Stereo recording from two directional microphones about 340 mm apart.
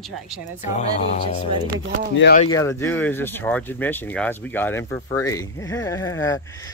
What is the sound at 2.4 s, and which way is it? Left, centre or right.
Speech, centre.